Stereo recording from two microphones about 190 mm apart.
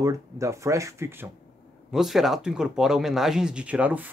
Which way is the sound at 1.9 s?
Centre (ahead or behind).